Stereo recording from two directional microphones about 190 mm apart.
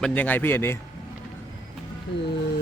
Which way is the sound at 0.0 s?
5° left (ahead or behind).